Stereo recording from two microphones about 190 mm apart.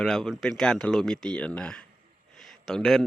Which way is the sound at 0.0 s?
Centre (ahead or behind).